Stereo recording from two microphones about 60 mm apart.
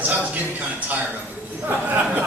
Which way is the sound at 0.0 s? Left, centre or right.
Right.